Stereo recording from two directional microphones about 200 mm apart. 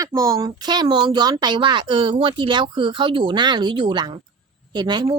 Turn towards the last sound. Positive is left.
turn(degrees=-20)  # may be behind; listen again after turning